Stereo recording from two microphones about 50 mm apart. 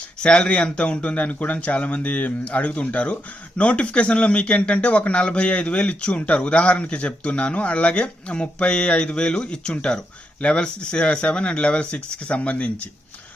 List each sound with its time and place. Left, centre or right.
0.2 s speech: centre